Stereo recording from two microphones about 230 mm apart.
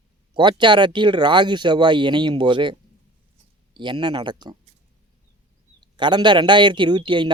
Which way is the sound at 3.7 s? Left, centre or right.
Centre.